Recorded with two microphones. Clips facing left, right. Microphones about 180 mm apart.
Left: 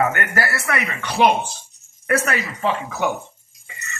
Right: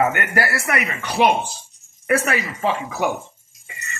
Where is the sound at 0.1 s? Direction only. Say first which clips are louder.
Right 1 dB; 15° right (ahead or behind).